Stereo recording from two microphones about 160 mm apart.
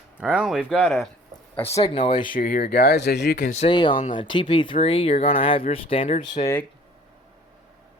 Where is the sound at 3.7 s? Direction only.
30° left (ahead or behind).